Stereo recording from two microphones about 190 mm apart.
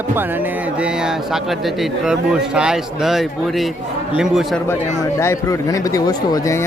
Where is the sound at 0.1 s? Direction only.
10° right (ahead or behind).